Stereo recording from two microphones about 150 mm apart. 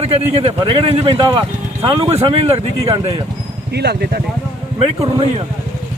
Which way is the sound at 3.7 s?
90° right.